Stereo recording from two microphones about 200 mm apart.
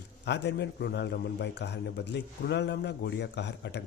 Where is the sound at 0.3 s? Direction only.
60° left (ahead or behind).